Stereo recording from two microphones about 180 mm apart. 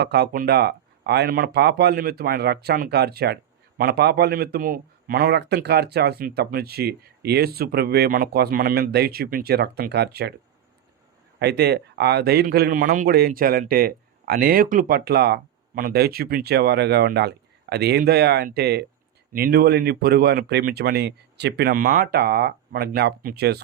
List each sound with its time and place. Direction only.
0.0 s a man's voice: 65° right (ahead or behind)
11.3 s a man's voice: 70° right (ahead or behind)